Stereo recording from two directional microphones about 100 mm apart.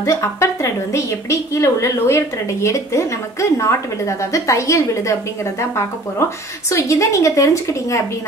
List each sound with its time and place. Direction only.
0.0 s a woman's voice: 30° left (ahead or behind)